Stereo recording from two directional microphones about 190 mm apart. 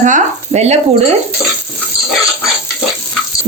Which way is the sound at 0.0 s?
40° right (ahead or behind).